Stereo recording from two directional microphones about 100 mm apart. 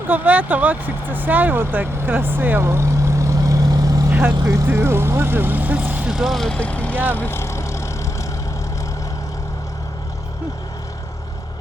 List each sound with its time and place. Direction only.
0.1 s speech: 15° right (ahead or behind); by 4.0 s 40° right (ahead or behind)
4.1 s speech: 15° right (ahead or behind)
4.4 s speech: 30° right (ahead or behind)
6.1 s speech: 5° right (ahead or behind); by 7.0 s 15° left (ahead or behind)
7.2 s vehicle: 25° left (ahead or behind)